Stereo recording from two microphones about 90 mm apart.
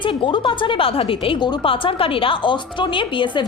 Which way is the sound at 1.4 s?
65° left (ahead or behind).